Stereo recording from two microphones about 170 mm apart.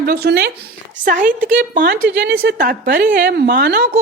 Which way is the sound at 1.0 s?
50° right (ahead or behind).